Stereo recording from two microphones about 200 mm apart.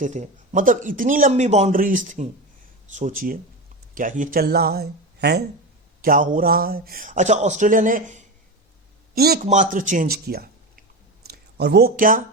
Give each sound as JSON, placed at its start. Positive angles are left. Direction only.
{"t": 0.0, "sound": "speech", "side_deg": -40}
{"t": 6.0, "sound": "speech", "side_deg": -45}
{"t": 9.1, "sound": "speech", "side_deg": -50}
{"t": 9.5, "sound": "speech", "side_deg": -40}